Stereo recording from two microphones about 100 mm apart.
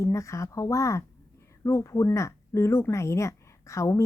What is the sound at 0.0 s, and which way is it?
A woman's voice, 30° left (ahead or behind).